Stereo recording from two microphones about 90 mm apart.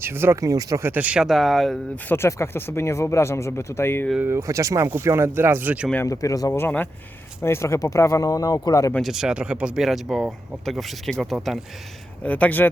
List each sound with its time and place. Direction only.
0.0 s speech: 25° right (ahead or behind)
0.4 s speech: 40° right (ahead or behind)
0.8 s speech: 20° right (ahead or behind)
1.3 s speech: centre (ahead or behind)
2.0 s speech: 30° left (ahead or behind)
4.2 s speech: 30° right (ahead or behind)
6.1 s speech: 40° left (ahead or behind)
6.5 s speech: 20° left (ahead or behind)
7.4 s speech: 30° left (ahead or behind)
9.0 s speech: 5° right (ahead or behind)
12.2 s speech: 15° left (ahead or behind)